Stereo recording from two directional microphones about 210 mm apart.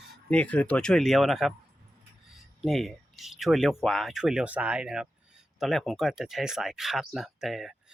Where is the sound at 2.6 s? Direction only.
Centre (ahead or behind).